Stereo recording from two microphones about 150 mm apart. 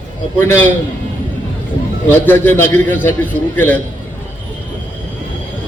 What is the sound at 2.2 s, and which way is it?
A man's voice, 15° left (ahead or behind).